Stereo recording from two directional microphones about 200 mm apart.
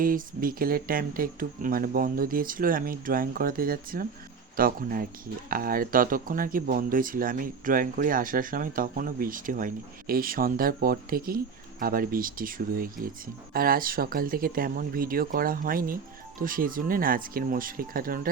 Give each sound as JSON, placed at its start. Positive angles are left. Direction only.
{"t": 0.0, "sound": "speech", "side_deg": -45}